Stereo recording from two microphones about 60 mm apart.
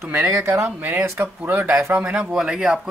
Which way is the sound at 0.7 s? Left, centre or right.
Right.